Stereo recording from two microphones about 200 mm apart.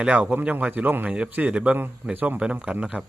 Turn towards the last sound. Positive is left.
turn(degrees=-5)  # may be behind; listen again after turning